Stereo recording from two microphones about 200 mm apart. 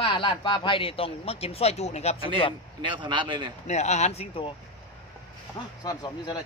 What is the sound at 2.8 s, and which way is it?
Speech, 25° right (ahead or behind).